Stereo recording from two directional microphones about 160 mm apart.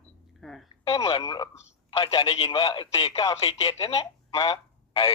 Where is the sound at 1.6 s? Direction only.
30° left (ahead or behind).